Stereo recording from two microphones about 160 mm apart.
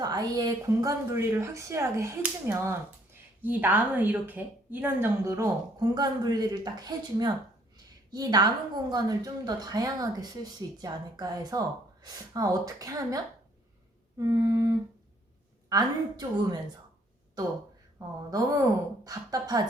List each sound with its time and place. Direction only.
0.0 s a woman's voice: 25° right (ahead or behind)
18.3 s a woman's voice: 20° right (ahead or behind)